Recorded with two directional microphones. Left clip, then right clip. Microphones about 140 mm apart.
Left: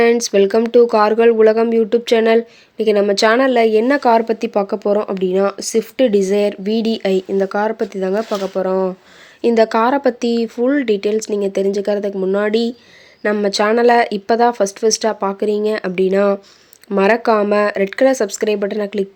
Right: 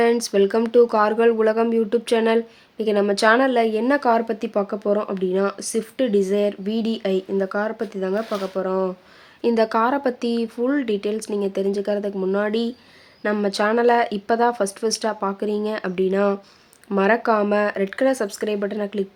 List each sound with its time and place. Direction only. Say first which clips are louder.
0.0 s speech: left 5 dB; 25° left (ahead or behind)